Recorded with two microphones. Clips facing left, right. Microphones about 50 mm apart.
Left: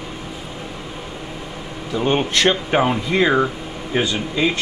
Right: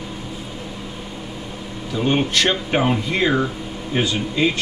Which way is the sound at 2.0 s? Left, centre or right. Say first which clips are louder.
Left 1 dB; centre.